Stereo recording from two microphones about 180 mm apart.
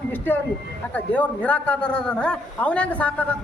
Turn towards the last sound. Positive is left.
turn(degrees=10)  # may be behind; listen again after turning